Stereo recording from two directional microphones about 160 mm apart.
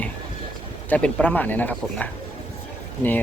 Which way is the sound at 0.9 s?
5° left (ahead or behind).